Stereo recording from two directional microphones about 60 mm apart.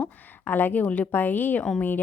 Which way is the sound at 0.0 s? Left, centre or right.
Left.